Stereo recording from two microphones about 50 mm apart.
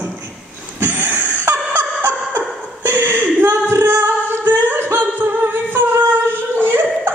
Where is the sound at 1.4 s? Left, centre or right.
Right.